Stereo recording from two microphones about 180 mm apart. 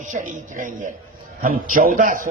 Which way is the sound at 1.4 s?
50° right (ahead or behind).